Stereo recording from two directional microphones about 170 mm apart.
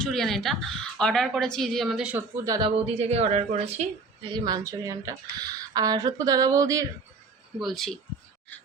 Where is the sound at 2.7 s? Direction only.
40° right (ahead or behind).